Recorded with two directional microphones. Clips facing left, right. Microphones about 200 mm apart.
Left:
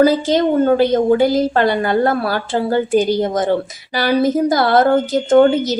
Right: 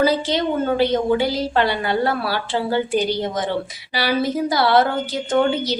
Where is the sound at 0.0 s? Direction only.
45° left (ahead or behind).